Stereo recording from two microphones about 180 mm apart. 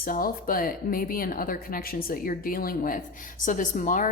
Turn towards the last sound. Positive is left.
turn(degrees=45)  # may be behind; listen again after turning